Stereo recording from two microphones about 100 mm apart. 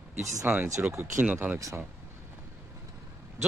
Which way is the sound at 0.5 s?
15° right (ahead or behind).